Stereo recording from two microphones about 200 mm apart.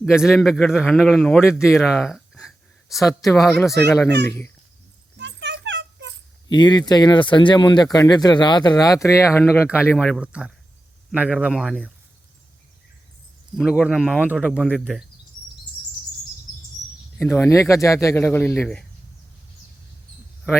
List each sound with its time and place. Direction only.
0.0 s a man's voice: 5° right (ahead or behind)
3.0 s speech: 15° left (ahead or behind)
5.1 s music: 65° right (ahead or behind)
6.5 s speech: 20° left (ahead or behind)
10.0 s a man's voice: 5° right (ahead or behind)
13.6 s a man's voice: centre (ahead or behind)
17.3 s speech: 15° left (ahead or behind)